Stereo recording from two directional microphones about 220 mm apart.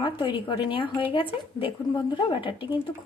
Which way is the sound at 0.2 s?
20° left (ahead or behind).